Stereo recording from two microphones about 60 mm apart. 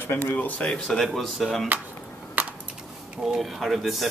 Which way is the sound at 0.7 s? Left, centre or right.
Centre.